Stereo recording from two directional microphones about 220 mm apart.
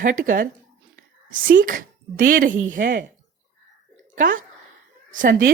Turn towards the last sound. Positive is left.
turn(degrees=-35)  # may be behind; listen again after turning